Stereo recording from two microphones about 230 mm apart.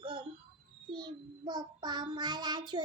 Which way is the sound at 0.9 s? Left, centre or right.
Centre.